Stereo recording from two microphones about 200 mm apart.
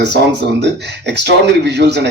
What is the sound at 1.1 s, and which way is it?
A man's voice, 60° right (ahead or behind).